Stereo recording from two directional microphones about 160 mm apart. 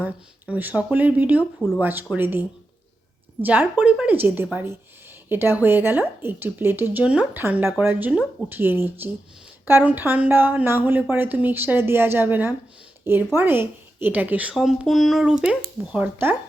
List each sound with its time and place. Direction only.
0.0 s speech: 10° right (ahead or behind)
3.4 s speech: 10° right (ahead or behind)